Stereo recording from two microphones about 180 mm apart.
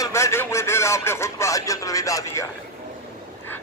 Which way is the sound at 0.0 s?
15° left (ahead or behind).